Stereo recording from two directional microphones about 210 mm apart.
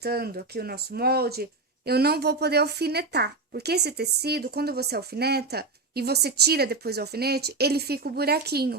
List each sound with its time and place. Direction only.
0.0 s speech: 45° right (ahead or behind)